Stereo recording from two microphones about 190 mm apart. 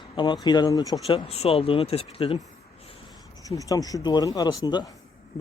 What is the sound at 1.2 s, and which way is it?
Speech, 35° left (ahead or behind).